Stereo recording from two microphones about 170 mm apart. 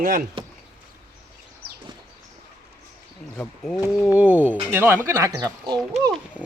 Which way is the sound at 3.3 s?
5° left (ahead or behind).